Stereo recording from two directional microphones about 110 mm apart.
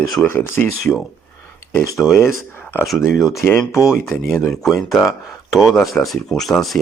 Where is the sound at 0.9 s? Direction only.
10° left (ahead or behind).